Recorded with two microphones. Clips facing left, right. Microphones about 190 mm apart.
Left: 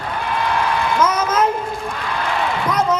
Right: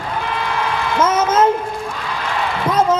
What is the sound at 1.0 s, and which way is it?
Speech, 25° right (ahead or behind).